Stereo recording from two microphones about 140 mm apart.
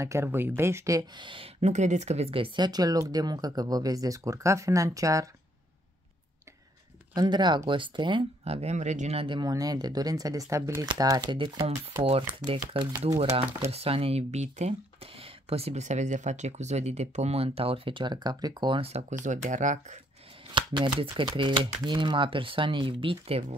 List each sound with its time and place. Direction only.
0.0 s speech: 20° right (ahead or behind); by 1.5 s 35° right (ahead or behind)
1.6 s speech: 55° right (ahead or behind); by 5.3 s 25° right (ahead or behind)
7.2 s speech: 30° right (ahead or behind)
18.8 s speech: 50° right (ahead or behind)
19.1 s speech: 60° right (ahead or behind)
20.5 s speech: 35° right (ahead or behind)